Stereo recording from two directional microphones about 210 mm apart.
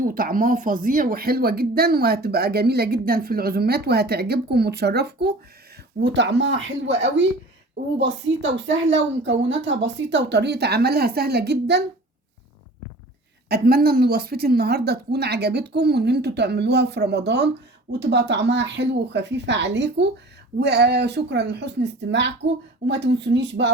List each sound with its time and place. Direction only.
0.0 s speech: 40° right (ahead or behind)
13.5 s speech: 45° right (ahead or behind)